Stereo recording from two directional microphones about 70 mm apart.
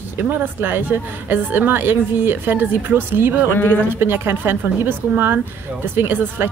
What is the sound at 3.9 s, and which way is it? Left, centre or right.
A woman's voice, right.